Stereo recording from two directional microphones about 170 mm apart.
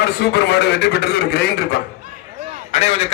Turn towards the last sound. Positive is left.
turn(degrees=40)  # may be behind; listen again after turning